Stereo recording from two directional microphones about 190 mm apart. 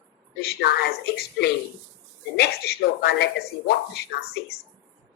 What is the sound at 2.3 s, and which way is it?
Music, 55° left (ahead or behind).